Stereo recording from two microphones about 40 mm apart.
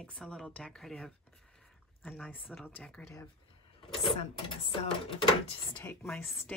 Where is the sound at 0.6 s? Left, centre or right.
Centre.